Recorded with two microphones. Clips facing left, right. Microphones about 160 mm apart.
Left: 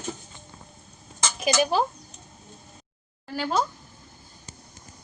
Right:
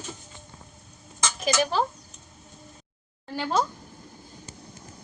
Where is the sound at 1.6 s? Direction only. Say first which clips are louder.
Left 2 dB; 15° left (ahead or behind).